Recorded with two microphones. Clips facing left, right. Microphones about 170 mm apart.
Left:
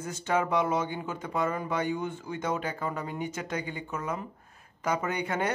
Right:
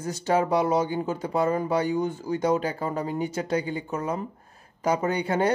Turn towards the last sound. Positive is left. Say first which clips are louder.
# right 6 dB
turn(degrees=-30)  # may be behind; listen again after turning